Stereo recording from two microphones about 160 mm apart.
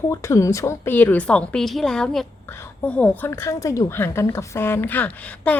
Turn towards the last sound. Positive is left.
turn(degrees=10)  # may be behind; listen again after turning